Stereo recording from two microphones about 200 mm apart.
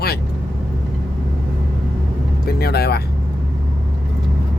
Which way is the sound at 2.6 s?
55° left (ahead or behind).